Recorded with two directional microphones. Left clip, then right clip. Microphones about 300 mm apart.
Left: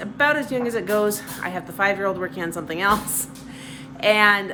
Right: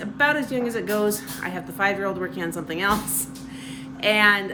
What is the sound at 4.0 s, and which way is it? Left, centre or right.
Speech, centre.